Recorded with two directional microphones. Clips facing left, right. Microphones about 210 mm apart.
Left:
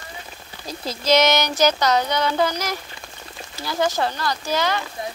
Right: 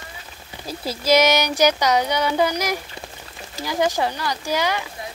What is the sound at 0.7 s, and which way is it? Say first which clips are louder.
Speech: right 1 dB; 10° right (ahead or behind).